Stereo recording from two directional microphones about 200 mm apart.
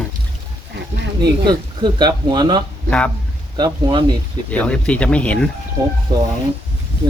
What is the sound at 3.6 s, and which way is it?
Speech, 20° right (ahead or behind).